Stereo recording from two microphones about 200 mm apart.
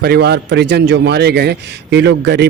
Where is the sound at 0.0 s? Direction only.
55° right (ahead or behind).